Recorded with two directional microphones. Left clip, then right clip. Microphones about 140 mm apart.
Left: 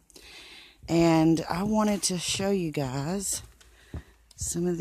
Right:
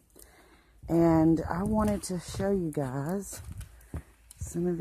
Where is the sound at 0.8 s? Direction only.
40° left (ahead or behind).